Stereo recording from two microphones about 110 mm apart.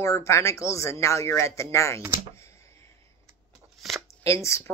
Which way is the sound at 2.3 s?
25° left (ahead or behind).